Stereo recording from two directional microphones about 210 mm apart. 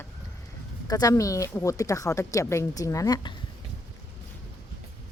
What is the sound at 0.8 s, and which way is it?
A woman's voice, 15° left (ahead or behind).